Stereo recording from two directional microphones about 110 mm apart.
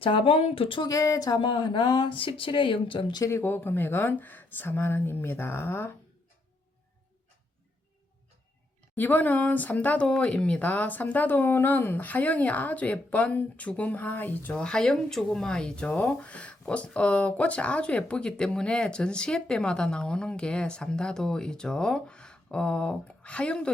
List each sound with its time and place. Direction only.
0.0 s speech: 55° left (ahead or behind)
0.8 s speech: 30° left (ahead or behind)
1.4 s speech: 50° left (ahead or behind)
3.2 s speech: 20° left (ahead or behind)
9.0 s speech: 15° left (ahead or behind)